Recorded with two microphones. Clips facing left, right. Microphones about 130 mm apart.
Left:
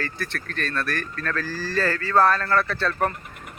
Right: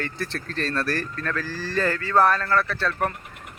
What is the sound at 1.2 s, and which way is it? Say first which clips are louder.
Speech: left 1 dB; 15° right (ahead or behind).